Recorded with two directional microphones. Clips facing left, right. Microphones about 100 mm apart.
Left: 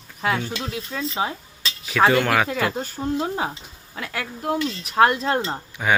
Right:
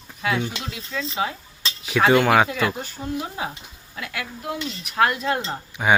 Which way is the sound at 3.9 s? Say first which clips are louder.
Left 2 dB; 40° left (ahead or behind).